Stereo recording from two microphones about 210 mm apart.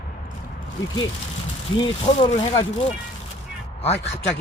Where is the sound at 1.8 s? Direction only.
25° left (ahead or behind).